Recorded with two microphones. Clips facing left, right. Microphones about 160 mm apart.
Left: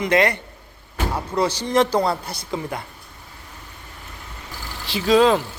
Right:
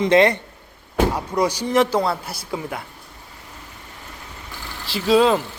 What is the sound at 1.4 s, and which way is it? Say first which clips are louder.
Speech: even; 10° right (ahead or behind).